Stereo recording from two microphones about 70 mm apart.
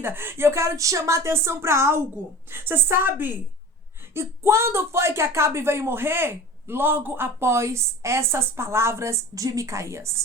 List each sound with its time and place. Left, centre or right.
0.0 s speech: right